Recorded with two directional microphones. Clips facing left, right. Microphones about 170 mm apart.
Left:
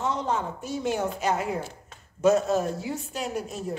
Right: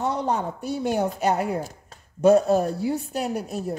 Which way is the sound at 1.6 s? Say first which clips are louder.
Right 3 dB; 35° right (ahead or behind).